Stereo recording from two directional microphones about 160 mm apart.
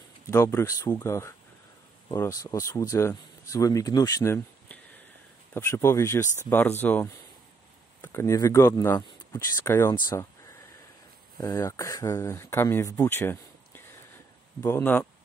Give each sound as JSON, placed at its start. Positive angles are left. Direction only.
{"t": 0.3, "sound": "speech", "side_deg": 15}
{"t": 11.3, "sound": "speech", "side_deg": 25}